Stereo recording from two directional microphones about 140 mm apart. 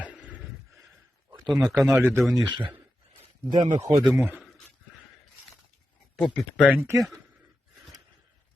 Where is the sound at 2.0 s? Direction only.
15° right (ahead or behind).